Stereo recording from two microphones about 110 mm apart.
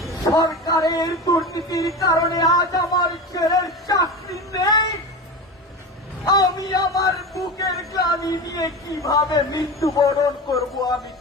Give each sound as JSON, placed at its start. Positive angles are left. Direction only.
{"t": 0.3, "sound": "speech", "side_deg": 35}
{"t": 6.2, "sound": "speech", "side_deg": 35}